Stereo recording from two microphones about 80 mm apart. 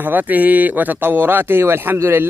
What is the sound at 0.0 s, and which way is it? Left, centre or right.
Speech, right.